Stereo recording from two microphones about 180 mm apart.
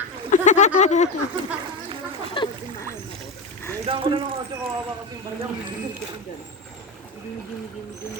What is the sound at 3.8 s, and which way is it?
Speech, 30° right (ahead or behind).